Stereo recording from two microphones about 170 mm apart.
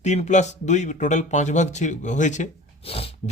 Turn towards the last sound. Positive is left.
turn(degrees=35)  # may be behind; listen again after turning